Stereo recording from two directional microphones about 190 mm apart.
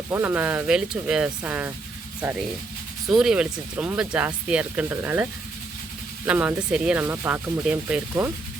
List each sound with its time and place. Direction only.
0.1 s speech: 10° right (ahead or behind)
3.1 s speech: 5° right (ahead or behind)